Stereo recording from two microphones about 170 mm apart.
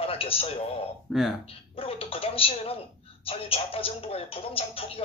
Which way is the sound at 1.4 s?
35° left (ahead or behind).